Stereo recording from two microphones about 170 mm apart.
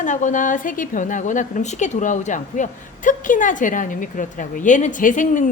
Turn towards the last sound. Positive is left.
turn(degrees=50)  # may be behind; listen again after turning